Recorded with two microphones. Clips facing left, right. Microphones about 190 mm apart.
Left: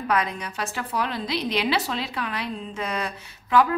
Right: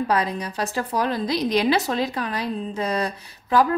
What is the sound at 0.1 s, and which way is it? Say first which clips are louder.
A woman's voice: right 2 dB; 35° right (ahead or behind).